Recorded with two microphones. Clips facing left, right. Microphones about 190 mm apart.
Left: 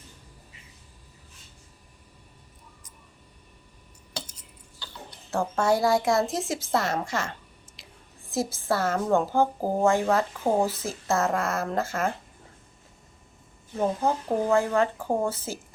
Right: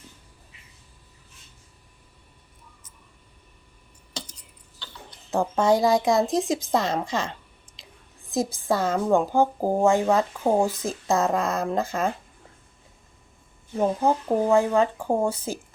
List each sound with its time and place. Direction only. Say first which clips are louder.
5.3 s a woman's voice: right 3 dB; 15° right (ahead or behind)
7.8 s a sound: right 2 dB; 20° right (ahead or behind)
8.3 s a woman's voice: right 2 dB; 15° right (ahead or behind)
13.7 s a woman's voice: right 3 dB; 15° right (ahead or behind)